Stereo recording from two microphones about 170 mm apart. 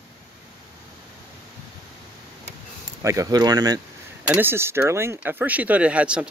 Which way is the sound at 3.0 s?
20° right (ahead or behind).